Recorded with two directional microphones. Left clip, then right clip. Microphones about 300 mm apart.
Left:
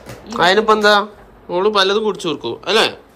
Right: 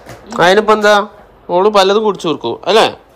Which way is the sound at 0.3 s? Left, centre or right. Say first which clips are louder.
Right 4 dB; centre.